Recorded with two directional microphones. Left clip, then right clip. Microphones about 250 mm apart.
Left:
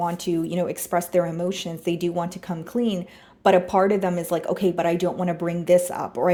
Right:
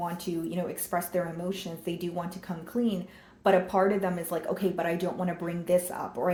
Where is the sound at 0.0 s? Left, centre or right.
Left.